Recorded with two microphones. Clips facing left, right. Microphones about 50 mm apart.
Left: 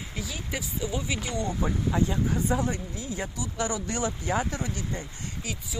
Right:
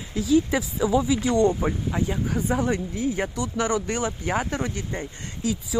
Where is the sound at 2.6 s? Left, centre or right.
Right.